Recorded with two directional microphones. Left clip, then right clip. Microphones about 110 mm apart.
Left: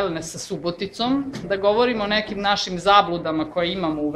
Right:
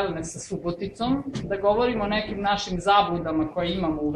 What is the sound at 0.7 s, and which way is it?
Speech, 55° left (ahead or behind).